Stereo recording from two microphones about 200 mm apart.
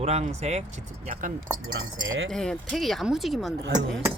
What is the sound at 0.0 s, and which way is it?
Speech, 30° right (ahead or behind).